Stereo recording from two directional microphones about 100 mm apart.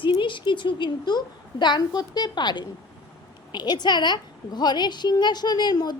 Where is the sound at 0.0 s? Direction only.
55° left (ahead or behind).